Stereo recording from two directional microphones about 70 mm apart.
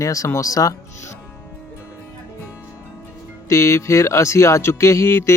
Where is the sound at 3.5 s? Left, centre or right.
Left.